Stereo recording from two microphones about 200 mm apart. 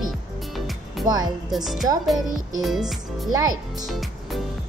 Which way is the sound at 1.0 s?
20° right (ahead or behind).